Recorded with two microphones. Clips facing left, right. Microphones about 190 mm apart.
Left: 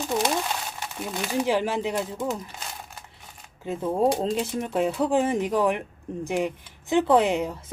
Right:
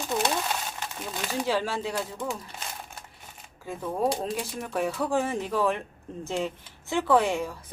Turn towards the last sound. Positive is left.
turn(degrees=20)  # may be behind; listen again after turning